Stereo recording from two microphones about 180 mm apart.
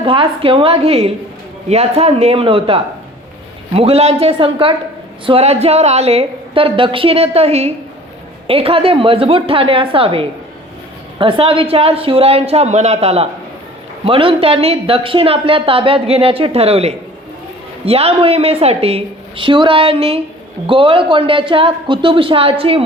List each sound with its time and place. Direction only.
0.0 s speech: 30° right (ahead or behind)